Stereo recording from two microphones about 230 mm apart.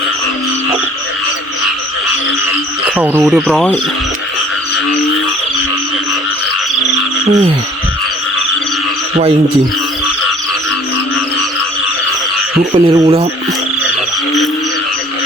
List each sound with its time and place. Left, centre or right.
3.0 s speech: centre
12.7 s speech: right